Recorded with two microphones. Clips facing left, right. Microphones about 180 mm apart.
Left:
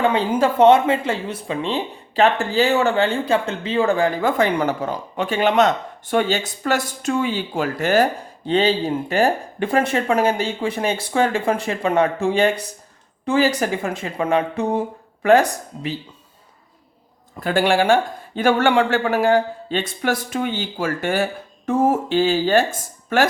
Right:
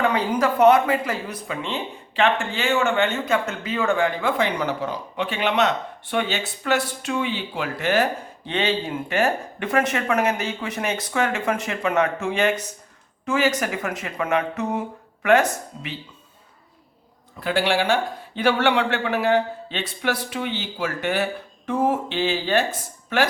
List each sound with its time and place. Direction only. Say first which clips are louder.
0.0 s speech: left 3 dB; 25° left (ahead or behind)
17.4 s speech: left 4 dB; 50° left (ahead or behind)